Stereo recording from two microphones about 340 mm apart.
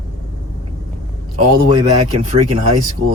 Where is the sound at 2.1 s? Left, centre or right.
Centre.